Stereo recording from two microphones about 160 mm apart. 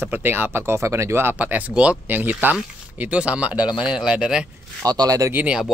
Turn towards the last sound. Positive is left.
turn(degrees=-5)  # may be behind; listen again after turning